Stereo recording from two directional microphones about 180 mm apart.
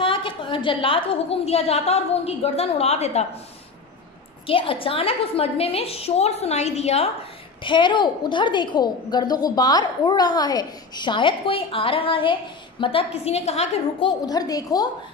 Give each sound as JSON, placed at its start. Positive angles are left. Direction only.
{"t": 0.0, "sound": "a woman's voice", "side_deg": 30}
{"t": 4.5, "sound": "a woman's voice", "side_deg": 30}
{"t": 7.6, "sound": "a woman's voice", "side_deg": 25}